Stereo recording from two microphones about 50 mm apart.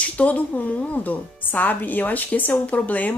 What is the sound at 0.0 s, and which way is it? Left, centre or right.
Speech, left.